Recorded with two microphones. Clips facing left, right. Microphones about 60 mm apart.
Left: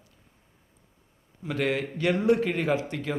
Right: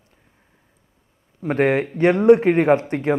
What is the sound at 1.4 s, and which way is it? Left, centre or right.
Speech, right.